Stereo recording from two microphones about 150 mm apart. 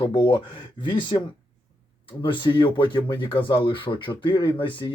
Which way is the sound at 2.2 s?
35° left (ahead or behind).